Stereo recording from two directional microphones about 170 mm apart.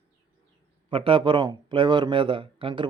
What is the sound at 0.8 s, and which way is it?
A man's voice, 30° right (ahead or behind).